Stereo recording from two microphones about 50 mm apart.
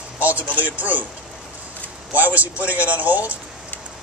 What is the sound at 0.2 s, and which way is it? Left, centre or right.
Speech, right.